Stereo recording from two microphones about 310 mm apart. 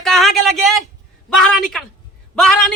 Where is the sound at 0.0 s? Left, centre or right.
Centre.